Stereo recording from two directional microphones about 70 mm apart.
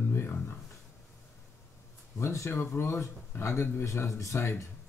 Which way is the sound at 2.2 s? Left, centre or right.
Left.